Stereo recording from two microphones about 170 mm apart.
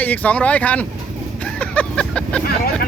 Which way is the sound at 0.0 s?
10° left (ahead or behind).